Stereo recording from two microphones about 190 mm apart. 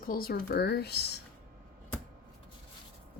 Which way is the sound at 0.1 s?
50° left (ahead or behind).